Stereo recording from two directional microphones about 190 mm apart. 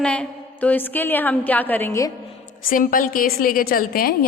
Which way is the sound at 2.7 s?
45° left (ahead or behind).